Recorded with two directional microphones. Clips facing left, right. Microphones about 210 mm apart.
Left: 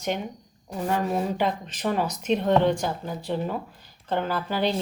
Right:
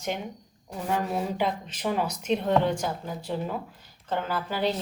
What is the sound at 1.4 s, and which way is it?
Speech, 5° right (ahead or behind).